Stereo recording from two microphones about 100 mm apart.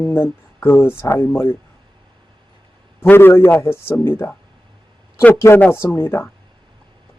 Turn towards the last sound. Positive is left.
turn(degrees=25)  # may be behind; listen again after turning